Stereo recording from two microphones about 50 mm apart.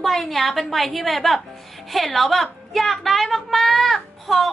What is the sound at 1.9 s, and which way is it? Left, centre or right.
A woman's voice, centre.